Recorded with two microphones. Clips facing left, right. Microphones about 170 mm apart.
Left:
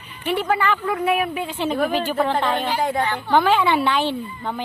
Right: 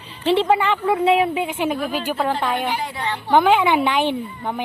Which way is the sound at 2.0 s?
5° right (ahead or behind).